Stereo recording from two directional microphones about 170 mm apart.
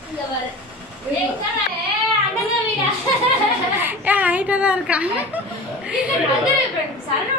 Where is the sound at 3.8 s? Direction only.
10° right (ahead or behind).